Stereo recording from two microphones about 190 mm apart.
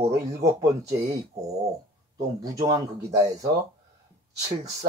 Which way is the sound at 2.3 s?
20° right (ahead or behind).